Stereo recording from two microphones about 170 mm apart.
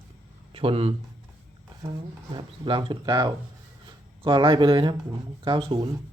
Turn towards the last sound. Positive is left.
turn(degrees=-30)  # may be behind; listen again after turning